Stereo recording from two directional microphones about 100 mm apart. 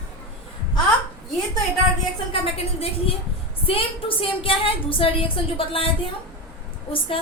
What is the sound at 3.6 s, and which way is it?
A woman's voice, 65° left (ahead or behind).